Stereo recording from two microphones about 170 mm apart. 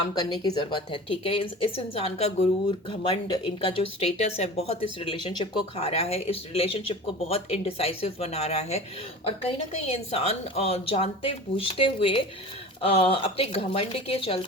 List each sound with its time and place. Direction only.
0.6 s speech: 30° left (ahead or behind)